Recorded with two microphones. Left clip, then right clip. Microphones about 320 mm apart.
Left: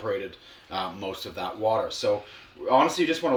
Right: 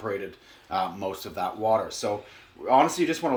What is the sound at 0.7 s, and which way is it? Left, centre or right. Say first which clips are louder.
Speech: right 3 dB; centre.